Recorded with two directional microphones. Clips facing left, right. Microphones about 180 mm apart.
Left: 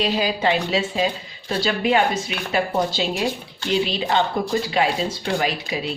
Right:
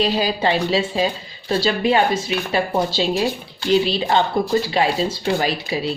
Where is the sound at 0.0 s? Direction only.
35° right (ahead or behind).